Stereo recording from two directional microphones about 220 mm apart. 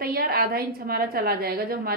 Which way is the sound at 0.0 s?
45° right (ahead or behind).